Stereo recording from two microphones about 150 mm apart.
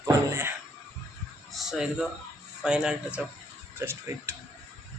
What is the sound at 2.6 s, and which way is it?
Speech, 5° right (ahead or behind).